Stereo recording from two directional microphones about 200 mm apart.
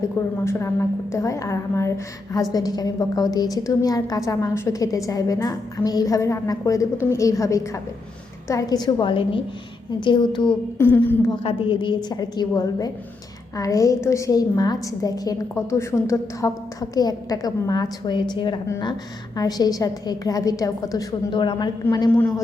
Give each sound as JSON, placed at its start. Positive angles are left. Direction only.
{"t": 0.4, "sound": "a woman's voice", "side_deg": 15}
{"t": 10.8, "sound": "a woman's voice", "side_deg": 10}
{"t": 11.4, "sound": "a woman's voice", "side_deg": 25}